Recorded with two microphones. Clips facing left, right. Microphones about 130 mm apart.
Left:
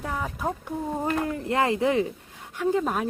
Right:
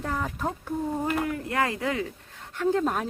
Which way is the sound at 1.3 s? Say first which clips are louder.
Left 3 dB; 25° left (ahead or behind).